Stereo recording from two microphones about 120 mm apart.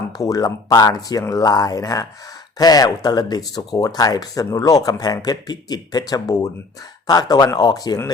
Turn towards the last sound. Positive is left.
turn(degrees=35)  # may be behind; listen again after turning